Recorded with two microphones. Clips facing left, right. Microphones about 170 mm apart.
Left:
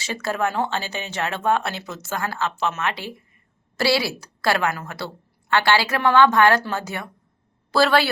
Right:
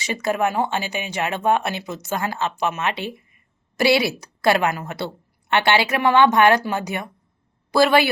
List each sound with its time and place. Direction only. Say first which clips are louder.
0.0 s a woman's voice: right 3 dB; 15° right (ahead or behind)